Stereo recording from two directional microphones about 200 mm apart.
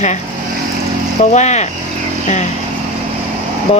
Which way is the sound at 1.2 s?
35° left (ahead or behind).